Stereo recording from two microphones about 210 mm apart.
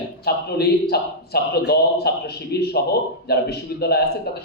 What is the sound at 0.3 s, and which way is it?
A man's voice, 50° left (ahead or behind).